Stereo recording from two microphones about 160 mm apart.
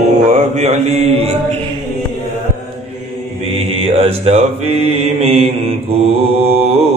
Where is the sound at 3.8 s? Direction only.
40° right (ahead or behind).